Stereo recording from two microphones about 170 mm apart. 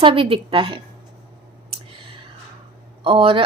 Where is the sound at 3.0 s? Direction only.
35° right (ahead or behind).